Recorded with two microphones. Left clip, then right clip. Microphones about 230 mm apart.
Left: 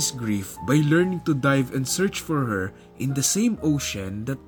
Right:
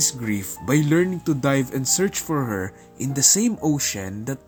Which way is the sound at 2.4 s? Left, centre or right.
Centre.